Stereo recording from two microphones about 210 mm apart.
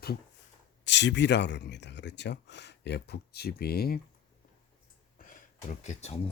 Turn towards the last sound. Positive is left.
turn(degrees=30)  # may be behind; listen again after turning